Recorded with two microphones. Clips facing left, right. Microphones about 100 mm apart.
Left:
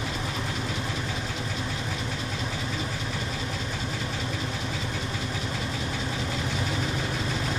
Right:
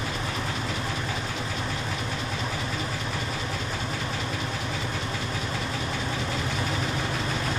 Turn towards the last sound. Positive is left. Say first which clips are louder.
# right 1 dB
turn(degrees=5)  # may be behind; listen again after turning